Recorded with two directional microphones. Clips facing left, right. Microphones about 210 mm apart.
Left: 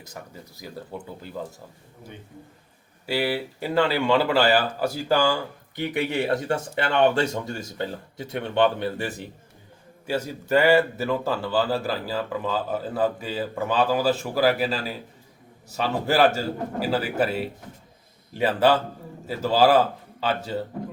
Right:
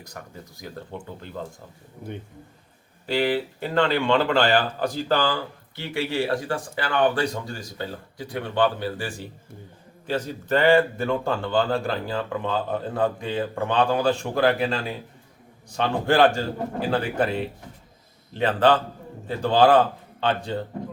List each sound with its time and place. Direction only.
0.0 s a man's voice: 5° left (ahead or behind)
3.1 s speech: 10° left (ahead or behind)
10.1 s a man's voice: 10° left (ahead or behind)